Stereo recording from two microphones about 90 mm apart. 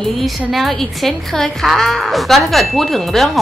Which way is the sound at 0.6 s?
5° left (ahead or behind).